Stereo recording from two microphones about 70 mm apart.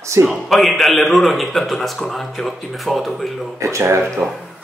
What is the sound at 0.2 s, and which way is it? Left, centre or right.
Speech, right.